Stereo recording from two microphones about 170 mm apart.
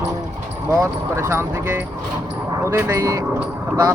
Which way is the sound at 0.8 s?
15° right (ahead or behind).